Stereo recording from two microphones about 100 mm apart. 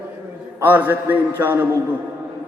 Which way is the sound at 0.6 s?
20° right (ahead or behind).